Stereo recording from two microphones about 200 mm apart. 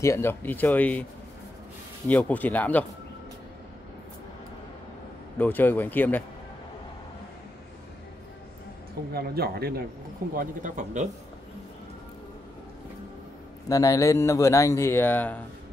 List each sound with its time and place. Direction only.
0.0 s speech: 15° left (ahead or behind)
2.0 s speech: 5° left (ahead or behind)
5.4 s speech: 10° left (ahead or behind)
9.1 s speech: 50° right (ahead or behind)
13.7 s speech: 15° left (ahead or behind)